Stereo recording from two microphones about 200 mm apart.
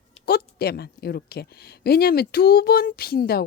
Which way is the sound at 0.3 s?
50° left (ahead or behind).